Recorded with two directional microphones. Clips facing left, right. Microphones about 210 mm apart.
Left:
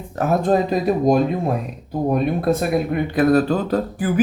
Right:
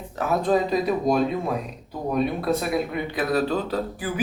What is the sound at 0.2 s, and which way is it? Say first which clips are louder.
A man's voice: left 4 dB; 50° left (ahead or behind).